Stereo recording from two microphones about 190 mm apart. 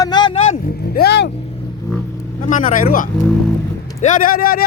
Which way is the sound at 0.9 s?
55° left (ahead or behind).